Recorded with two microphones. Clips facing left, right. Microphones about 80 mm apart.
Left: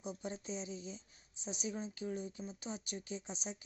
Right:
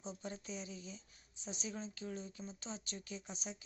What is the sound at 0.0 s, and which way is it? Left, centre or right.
Speech, centre.